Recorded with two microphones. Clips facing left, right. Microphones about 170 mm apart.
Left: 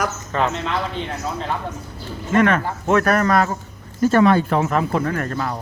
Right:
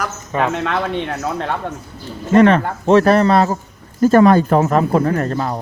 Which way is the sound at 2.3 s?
30° right (ahead or behind).